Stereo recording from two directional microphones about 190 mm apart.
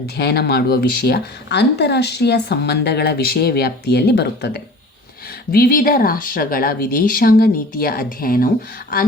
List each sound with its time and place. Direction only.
0.2 s speech: 55° left (ahead or behind)